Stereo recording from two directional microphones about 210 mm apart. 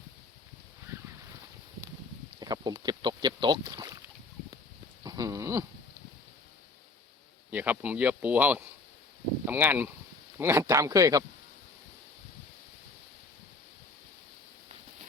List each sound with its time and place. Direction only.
2.4 s speech: 20° right (ahead or behind)
5.0 s a sound: 15° right (ahead or behind)
7.5 s speech: 10° right (ahead or behind)